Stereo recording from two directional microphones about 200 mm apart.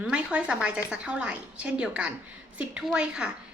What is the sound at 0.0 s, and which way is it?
A woman's voice, 5° right (ahead or behind).